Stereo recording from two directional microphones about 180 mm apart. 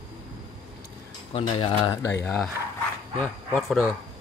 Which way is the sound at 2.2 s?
5° left (ahead or behind).